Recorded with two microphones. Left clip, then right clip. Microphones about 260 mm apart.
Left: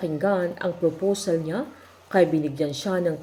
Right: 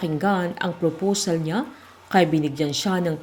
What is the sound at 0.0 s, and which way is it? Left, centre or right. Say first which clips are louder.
A woman's voice: even; right.